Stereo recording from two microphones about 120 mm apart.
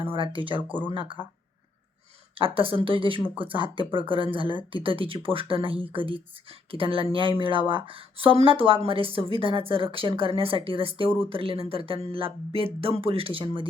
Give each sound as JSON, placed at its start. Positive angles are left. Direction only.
{"t": 0.0, "sound": "a woman's voice", "side_deg": -45}
{"t": 2.4, "sound": "a woman's voice", "side_deg": -45}